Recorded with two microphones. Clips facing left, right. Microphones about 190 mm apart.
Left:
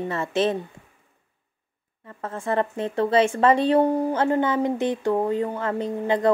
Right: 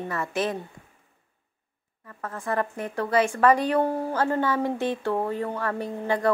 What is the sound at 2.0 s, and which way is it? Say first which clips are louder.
Speech: left 3 dB; 25° left (ahead or behind).